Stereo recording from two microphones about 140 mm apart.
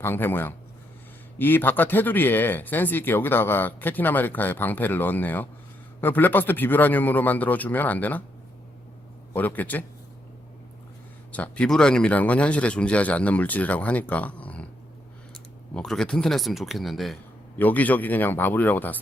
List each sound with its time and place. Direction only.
0.0 s speech: 15° left (ahead or behind)
9.3 s speech: 10° left (ahead or behind)
11.3 s speech: 10° left (ahead or behind)
15.7 s speech: 5° left (ahead or behind)
17.6 s speech: 10° left (ahead or behind)